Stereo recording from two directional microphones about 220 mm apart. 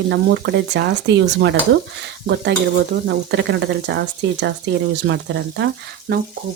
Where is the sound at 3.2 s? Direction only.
50° right (ahead or behind).